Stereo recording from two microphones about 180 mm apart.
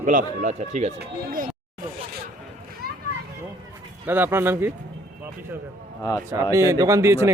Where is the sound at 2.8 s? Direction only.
55° right (ahead or behind).